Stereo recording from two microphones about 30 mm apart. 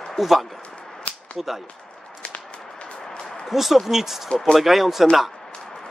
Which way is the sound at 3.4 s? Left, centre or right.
Centre.